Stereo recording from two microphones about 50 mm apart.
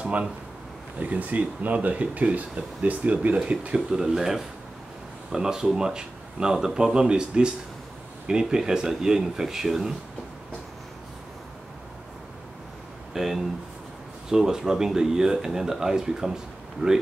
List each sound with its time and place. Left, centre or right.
0.9 s speech: right
3.9 s speech: centre
13.1 s speech: centre
16.8 s speech: right